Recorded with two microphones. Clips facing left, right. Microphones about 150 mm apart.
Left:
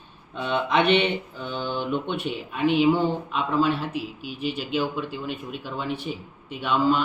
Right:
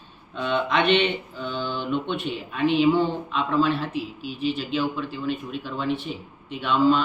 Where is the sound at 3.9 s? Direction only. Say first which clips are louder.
Right 1 dB; 45° left (ahead or behind).